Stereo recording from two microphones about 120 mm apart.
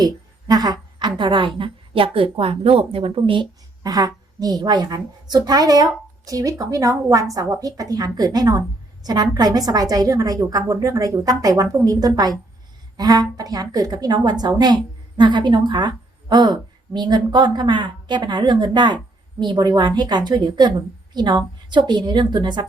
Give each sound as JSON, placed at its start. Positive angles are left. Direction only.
{"t": 0.0, "sound": "a sound", "side_deg": -35}
{"t": 1.2, "sound": "a woman's voice", "side_deg": -45}
{"t": 3.8, "sound": "a woman's voice", "side_deg": -30}